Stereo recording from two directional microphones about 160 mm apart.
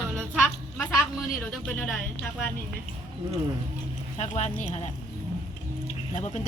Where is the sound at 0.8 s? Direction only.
10° left (ahead or behind).